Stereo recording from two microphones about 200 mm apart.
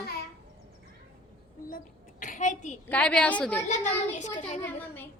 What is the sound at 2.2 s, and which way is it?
Speech, 40° left (ahead or behind).